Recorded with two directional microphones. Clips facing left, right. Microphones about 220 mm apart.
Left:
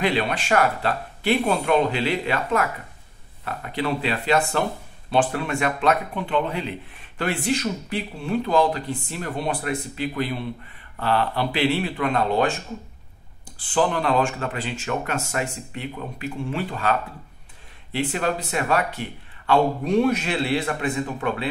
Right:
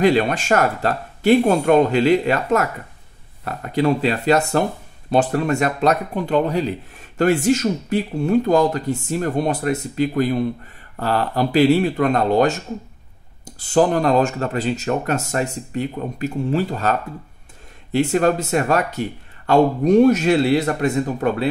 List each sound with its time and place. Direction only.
0.0 s speech: 45° right (ahead or behind)
17.9 s speech: 45° right (ahead or behind)